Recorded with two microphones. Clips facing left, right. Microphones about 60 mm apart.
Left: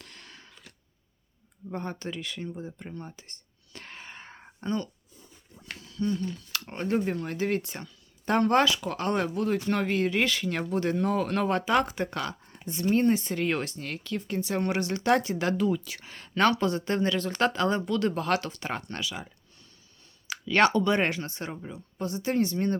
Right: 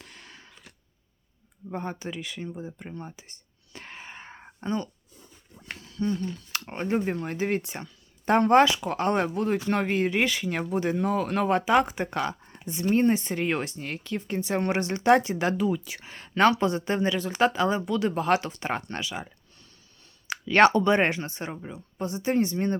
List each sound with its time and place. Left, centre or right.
0.0 s a sound: centre
1.7 s speech: centre
3.1 s whispering: centre
5.6 s speech: right